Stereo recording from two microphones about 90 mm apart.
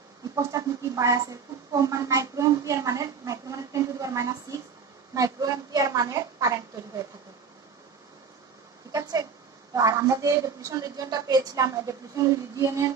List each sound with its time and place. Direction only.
0.4 s a woman's voice: 35° right (ahead or behind)
8.9 s a woman's voice: 40° right (ahead or behind)